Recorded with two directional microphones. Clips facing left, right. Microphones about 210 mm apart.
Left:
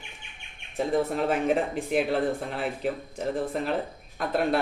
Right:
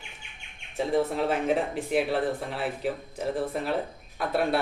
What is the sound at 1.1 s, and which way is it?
Speech, centre (ahead or behind).